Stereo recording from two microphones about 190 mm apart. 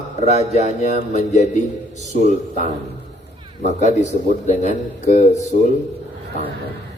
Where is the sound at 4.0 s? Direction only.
40° left (ahead or behind).